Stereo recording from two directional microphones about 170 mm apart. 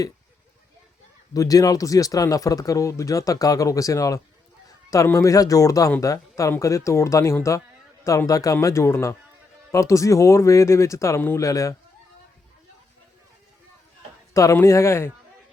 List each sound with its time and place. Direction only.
1.3 s speech: 20° left (ahead or behind)
14.3 s speech: 15° left (ahead or behind)